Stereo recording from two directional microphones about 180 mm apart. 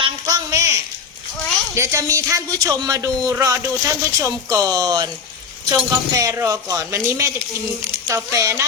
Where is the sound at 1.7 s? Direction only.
15° right (ahead or behind).